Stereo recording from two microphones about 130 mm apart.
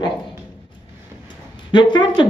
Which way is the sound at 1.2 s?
35° left (ahead or behind).